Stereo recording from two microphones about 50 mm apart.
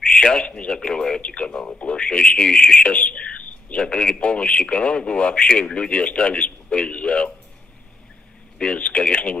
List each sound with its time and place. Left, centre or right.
0.0 s speech: centre
8.5 s speech: centre